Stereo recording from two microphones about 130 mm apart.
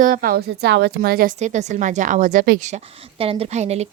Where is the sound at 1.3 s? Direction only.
65° right (ahead or behind).